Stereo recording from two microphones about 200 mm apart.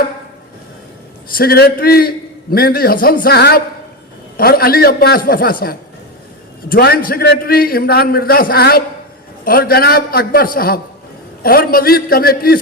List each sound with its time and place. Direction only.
1.4 s a man's voice: 50° left (ahead or behind)